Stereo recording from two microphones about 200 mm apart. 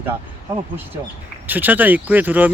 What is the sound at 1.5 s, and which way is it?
Speech, 10° right (ahead or behind).